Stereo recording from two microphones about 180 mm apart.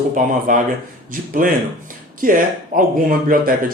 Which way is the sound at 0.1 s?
45° right (ahead or behind).